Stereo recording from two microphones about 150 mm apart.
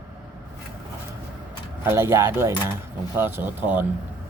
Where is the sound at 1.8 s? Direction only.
15° right (ahead or behind).